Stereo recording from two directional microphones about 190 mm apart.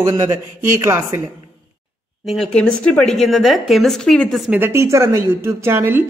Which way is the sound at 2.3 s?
5° left (ahead or behind).